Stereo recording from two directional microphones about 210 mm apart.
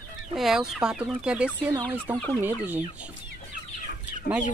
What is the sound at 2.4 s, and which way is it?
Chicken, 10° right (ahead or behind).